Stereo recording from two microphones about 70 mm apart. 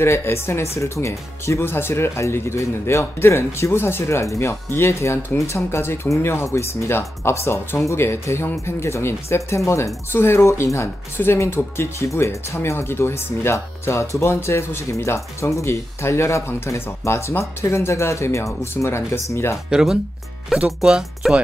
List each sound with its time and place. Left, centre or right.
0.0 s speech: left
12.6 s speech: left
19.7 s speech: centre